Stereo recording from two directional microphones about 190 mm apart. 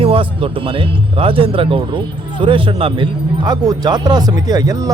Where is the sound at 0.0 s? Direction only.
30° right (ahead or behind).